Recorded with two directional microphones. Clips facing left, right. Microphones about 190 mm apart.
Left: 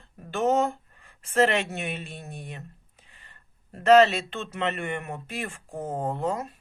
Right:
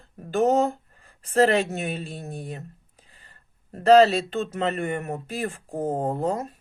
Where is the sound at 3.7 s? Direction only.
35° right (ahead or behind).